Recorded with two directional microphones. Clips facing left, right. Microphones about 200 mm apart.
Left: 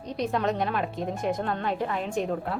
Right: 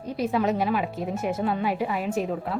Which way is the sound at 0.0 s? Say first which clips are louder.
Right 2 dB; 5° right (ahead or behind).